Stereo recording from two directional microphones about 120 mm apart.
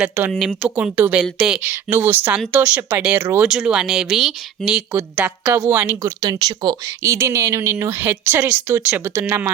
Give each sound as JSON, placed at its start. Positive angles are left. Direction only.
{"t": 0.3, "sound": "speech", "side_deg": -5}
{"t": 7.0, "sound": "speech", "side_deg": -25}